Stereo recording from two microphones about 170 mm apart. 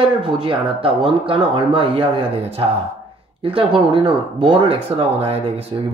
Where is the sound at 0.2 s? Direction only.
30° right (ahead or behind).